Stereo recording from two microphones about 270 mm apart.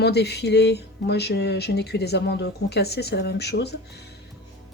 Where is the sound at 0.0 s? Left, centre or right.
Left.